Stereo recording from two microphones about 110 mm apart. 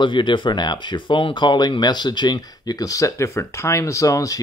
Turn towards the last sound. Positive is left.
turn(degrees=30)  # may be behind; listen again after turning